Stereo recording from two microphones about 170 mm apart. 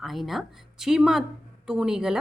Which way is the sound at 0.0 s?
Centre (ahead or behind).